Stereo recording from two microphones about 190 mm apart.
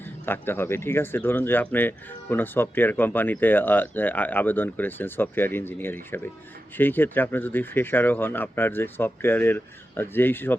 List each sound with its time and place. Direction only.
0.0 s speech: 10° left (ahead or behind)